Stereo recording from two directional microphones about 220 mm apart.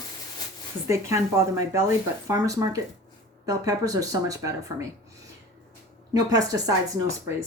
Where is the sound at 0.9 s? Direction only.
15° right (ahead or behind).